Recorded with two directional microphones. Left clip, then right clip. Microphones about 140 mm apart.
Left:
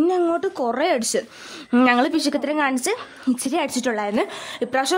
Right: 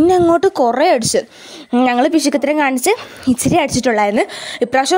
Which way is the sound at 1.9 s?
40° right (ahead or behind).